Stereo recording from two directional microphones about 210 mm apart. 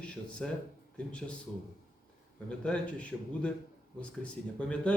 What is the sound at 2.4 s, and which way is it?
A man's voice, 5° left (ahead or behind).